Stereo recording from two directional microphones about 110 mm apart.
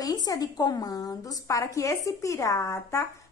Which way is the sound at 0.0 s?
35° left (ahead or behind).